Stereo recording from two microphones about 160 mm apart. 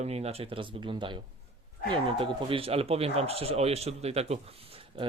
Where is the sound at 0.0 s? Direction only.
40° right (ahead or behind).